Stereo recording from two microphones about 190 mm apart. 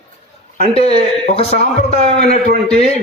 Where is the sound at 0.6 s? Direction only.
35° left (ahead or behind).